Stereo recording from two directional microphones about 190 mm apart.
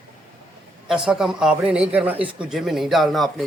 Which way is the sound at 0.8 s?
5° right (ahead or behind).